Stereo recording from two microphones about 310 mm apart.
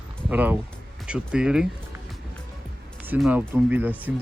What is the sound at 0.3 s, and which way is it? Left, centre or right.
Speech, centre.